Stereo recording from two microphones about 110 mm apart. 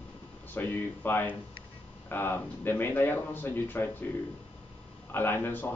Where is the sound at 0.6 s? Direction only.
20° left (ahead or behind).